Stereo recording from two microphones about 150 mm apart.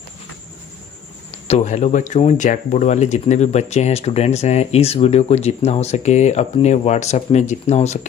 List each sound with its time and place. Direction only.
1.5 s speech: 50° left (ahead or behind)